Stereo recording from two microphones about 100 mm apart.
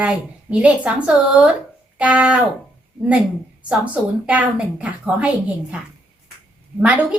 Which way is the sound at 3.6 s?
15° right (ahead or behind).